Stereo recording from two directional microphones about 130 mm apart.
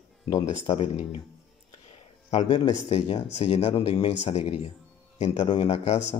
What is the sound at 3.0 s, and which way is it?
Speech, 60° left (ahead or behind).